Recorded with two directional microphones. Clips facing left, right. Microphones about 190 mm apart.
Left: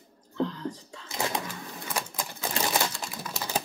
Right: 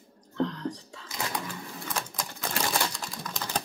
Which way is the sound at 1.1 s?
25° left (ahead or behind).